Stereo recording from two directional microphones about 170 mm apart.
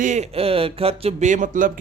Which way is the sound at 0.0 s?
45° right (ahead or behind).